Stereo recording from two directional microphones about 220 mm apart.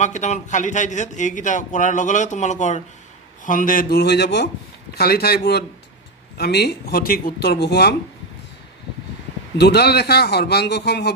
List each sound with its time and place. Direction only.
0.0 s a man's voice: 30° left (ahead or behind); by 7.9 s 50° left (ahead or behind)
9.6 s speech: 50° left (ahead or behind)